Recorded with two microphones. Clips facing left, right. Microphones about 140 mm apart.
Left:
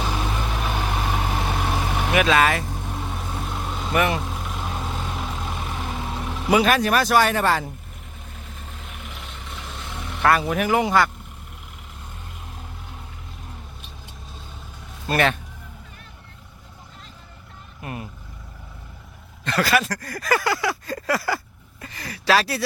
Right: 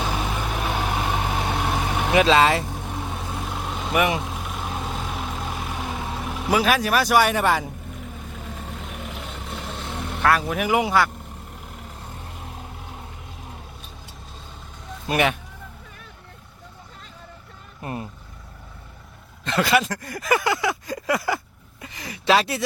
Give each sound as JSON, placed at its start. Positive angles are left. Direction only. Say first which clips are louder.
{"t": 0.0, "sound": "vehicle", "louder": "even", "side_deg": -5}
{"t": 2.1, "sound": "speech", "louder": "right 2 dB", "side_deg": -25}
{"t": 3.1, "sound": "vehicle", "louder": "even", "side_deg": 0}
{"t": 10.2, "sound": "speech", "louder": "left 1 dB", "side_deg": 0}
{"t": 10.6, "sound": "speech", "louder": "left 1 dB", "side_deg": -10}
{"t": 15.0, "sound": "speech", "louder": "even", "side_deg": -15}
{"t": 17.8, "sound": "vehicle", "louder": "right 2 dB", "side_deg": -30}
{"t": 19.5, "sound": "a sound", "louder": "right 1 dB", "side_deg": -20}